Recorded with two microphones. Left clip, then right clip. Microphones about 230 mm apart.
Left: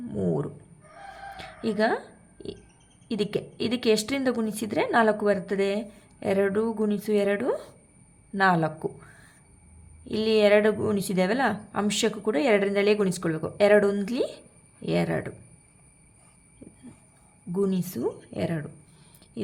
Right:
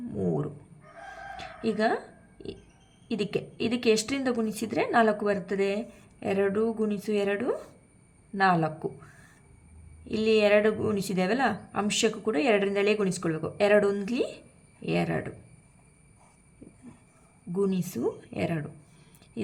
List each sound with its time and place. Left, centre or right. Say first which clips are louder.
0.1 s a sound: left 2 dB; centre
3.1 s a woman's voice: left 2 dB; centre
17.5 s speech: left 1 dB; centre